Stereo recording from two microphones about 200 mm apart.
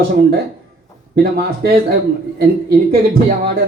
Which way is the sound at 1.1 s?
50° right (ahead or behind).